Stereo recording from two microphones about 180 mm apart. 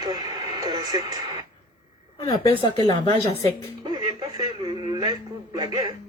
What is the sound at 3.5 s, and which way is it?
Speech, 15° left (ahead or behind).